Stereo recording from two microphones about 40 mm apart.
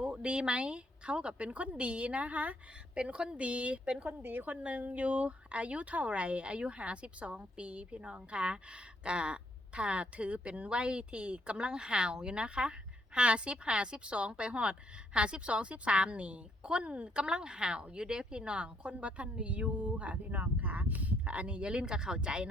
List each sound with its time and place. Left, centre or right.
0.0 s speech: right
4.2 s a woman's voice: right
4.6 s speech: right